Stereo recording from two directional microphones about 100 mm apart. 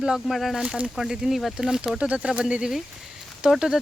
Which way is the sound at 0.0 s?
Centre (ahead or behind).